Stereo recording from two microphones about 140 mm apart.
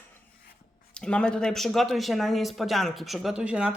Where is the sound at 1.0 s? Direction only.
5° left (ahead or behind).